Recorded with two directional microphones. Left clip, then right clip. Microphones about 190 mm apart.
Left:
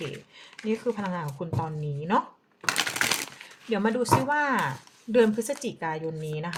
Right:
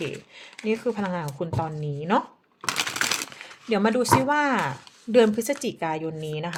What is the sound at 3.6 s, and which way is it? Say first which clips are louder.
Speech: right 3 dB; 50° right (ahead or behind).